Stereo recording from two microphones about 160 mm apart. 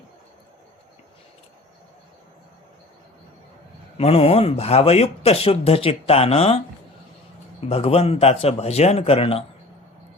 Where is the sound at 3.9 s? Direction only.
40° left (ahead or behind).